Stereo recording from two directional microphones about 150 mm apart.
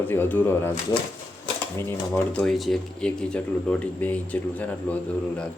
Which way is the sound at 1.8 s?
15° left (ahead or behind).